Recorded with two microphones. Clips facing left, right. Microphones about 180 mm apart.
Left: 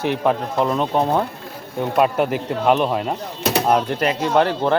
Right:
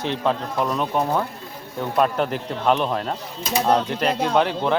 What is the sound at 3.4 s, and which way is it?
Speech, 70° left (ahead or behind).